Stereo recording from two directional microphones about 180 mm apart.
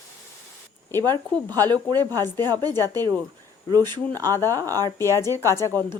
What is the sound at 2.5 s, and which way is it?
Speech, 20° right (ahead or behind).